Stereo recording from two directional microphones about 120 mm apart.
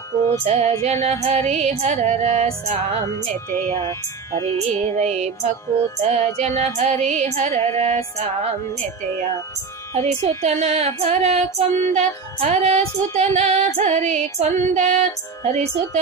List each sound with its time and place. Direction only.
0.5 s music: 60° right (ahead or behind)
1.0 s female singing: 65° right (ahead or behind)
3.7 s speech: 25° left (ahead or behind)
4.5 s female singing: 70° right (ahead or behind)
10.0 s female singing: 65° right (ahead or behind); by 15.0 s 80° right
15.5 s female singing: 70° right (ahead or behind)